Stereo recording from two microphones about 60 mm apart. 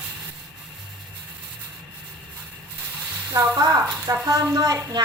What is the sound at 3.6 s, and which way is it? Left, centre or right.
Speech, right.